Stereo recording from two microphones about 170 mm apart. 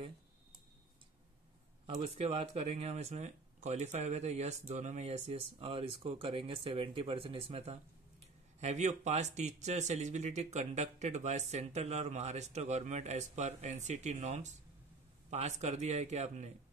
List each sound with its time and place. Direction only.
2.0 s speech: 35° right (ahead or behind)